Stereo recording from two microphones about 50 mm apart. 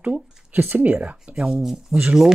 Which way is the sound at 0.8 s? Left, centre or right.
Right.